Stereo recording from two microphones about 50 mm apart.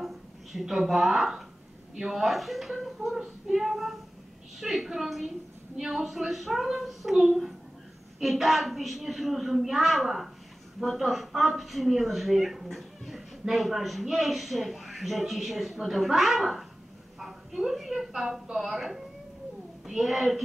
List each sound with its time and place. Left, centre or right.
0.0 s a woman's voice: centre